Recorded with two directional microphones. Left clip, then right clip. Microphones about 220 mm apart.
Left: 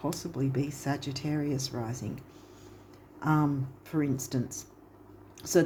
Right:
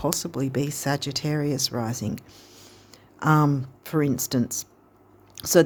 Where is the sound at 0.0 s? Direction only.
50° right (ahead or behind).